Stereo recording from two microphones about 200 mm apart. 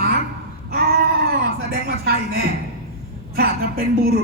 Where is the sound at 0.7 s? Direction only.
50° right (ahead or behind).